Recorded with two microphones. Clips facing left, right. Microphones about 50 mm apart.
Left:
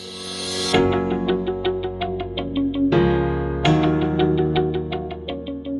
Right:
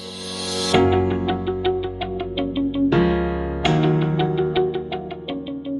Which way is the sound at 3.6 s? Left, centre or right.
Centre.